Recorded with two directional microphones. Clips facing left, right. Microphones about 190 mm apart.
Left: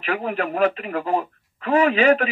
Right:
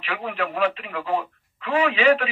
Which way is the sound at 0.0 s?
40° left (ahead or behind).